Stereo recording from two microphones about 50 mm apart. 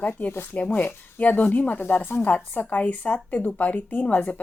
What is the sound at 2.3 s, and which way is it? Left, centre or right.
Speech, left.